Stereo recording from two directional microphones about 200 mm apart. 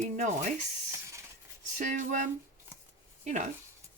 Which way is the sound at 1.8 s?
40° right (ahead or behind).